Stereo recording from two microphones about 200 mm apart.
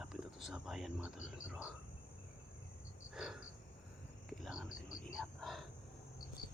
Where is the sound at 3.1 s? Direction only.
5° right (ahead or behind).